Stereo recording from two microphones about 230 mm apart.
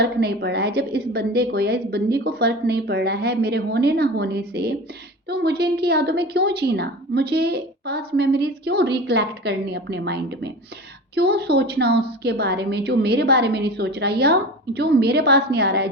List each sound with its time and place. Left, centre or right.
0.0 s a woman's voice: right